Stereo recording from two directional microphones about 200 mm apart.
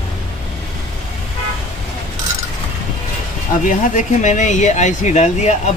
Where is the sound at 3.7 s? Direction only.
40° left (ahead or behind).